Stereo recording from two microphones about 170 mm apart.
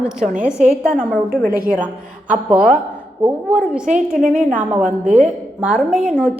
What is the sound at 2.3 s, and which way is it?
A woman's voice, 10° right (ahead or behind).